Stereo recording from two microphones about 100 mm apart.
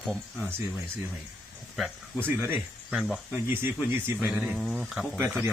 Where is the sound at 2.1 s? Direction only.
20° right (ahead or behind).